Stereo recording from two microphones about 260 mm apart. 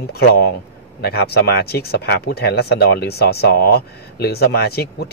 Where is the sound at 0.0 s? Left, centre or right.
Left.